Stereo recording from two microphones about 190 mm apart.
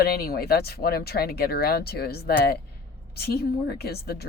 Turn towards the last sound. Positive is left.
turn(degrees=55)  # may be behind; listen again after turning